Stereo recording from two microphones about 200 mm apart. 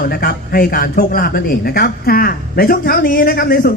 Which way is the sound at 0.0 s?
50° left (ahead or behind).